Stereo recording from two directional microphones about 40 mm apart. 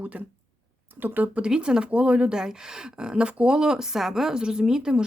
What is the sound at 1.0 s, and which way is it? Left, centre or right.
Speech, right.